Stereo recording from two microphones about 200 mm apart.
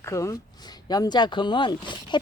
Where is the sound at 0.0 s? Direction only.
15° left (ahead or behind).